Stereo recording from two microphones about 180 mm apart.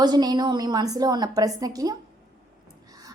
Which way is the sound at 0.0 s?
25° right (ahead or behind).